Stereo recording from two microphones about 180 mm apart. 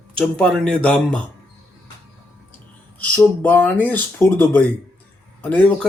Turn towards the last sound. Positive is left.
turn(degrees=10)  # may be behind; listen again after turning